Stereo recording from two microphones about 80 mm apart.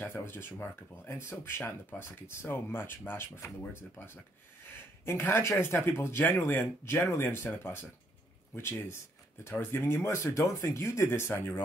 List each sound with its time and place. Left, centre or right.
0.0 s speech: left